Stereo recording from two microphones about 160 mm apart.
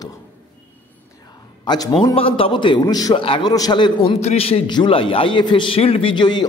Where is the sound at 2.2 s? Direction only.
35° left (ahead or behind).